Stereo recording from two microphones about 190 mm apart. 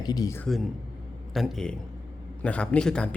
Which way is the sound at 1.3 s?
Centre (ahead or behind).